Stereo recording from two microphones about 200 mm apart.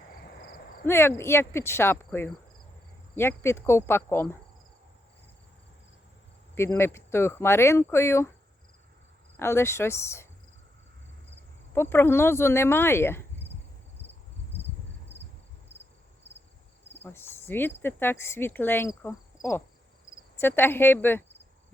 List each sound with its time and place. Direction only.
0.2 s a sound: 55° left (ahead or behind)
0.9 s speech: 10° left (ahead or behind)
3.2 s speech: 15° left (ahead or behind)
6.6 s speech: 10° left (ahead or behind)
9.4 s speech: 15° left (ahead or behind)
11.7 s speech: 10° left (ahead or behind)
17.0 s speech: 10° left (ahead or behind)